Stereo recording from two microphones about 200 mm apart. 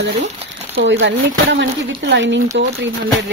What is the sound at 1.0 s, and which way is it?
Speech, 60° right (ahead or behind).